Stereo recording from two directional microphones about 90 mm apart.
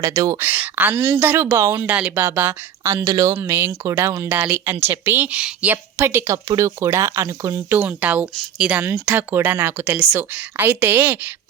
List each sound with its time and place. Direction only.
0.0 s speech: 40° right (ahead or behind)
0.3 s speech: 20° right (ahead or behind); by 3.3 s 40° right (ahead or behind)
3.3 s speech: 25° right (ahead or behind)
4.4 s speech: 20° right (ahead or behind)
6.0 s speech: 30° right (ahead or behind)
7.8 s a woman's voice: 15° right (ahead or behind)
8.8 s a woman's voice: 20° right (ahead or behind)